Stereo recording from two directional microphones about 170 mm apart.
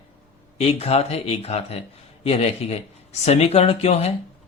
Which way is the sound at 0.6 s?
35° left (ahead or behind).